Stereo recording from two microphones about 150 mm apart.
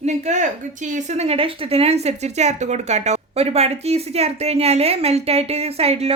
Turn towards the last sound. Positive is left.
turn(degrees=-45)  # may be behind; listen again after turning